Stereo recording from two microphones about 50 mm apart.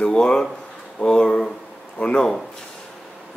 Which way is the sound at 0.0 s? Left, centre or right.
Centre.